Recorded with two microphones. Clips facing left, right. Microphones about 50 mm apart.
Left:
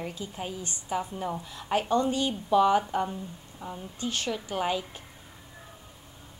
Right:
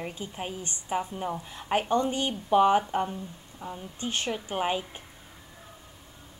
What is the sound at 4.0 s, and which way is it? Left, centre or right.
Speech, right.